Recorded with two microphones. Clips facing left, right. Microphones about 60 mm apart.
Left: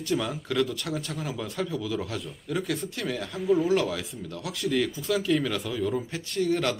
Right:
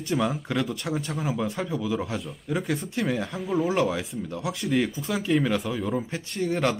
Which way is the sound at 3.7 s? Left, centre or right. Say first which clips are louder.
Right 1 dB; centre.